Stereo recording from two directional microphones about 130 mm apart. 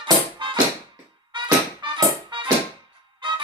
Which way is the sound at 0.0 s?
35° right (ahead or behind).